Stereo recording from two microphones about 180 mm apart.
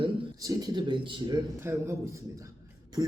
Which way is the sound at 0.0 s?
20° right (ahead or behind).